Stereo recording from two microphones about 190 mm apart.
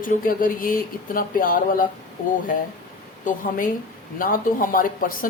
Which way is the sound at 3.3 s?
45° left (ahead or behind).